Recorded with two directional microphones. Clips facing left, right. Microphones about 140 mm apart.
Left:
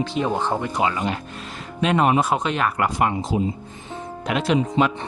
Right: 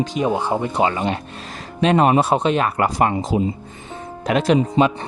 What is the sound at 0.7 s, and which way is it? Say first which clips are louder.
Speech: right 3 dB; 30° right (ahead or behind).